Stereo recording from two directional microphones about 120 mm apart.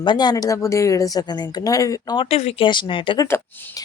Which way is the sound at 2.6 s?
40° left (ahead or behind).